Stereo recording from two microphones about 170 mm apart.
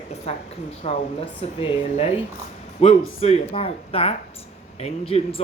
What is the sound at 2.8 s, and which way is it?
Speech, 35° left (ahead or behind).